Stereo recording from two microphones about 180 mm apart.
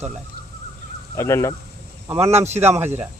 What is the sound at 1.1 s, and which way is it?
Speech, 15° left (ahead or behind).